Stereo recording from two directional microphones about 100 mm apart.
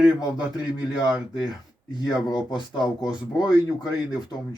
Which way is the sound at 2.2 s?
45° left (ahead or behind).